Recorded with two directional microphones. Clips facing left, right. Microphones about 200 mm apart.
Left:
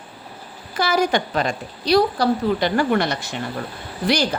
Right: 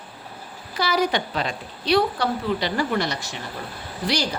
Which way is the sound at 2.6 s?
55° left (ahead or behind).